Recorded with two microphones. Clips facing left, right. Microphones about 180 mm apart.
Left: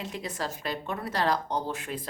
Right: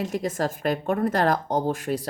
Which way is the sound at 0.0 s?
45° right (ahead or behind).